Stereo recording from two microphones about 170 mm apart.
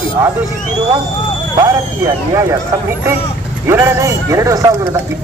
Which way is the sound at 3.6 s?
15° right (ahead or behind).